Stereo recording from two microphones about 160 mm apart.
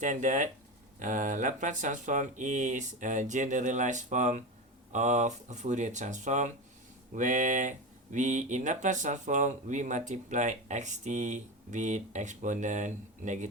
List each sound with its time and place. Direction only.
0.0 s speech: 50° right (ahead or behind)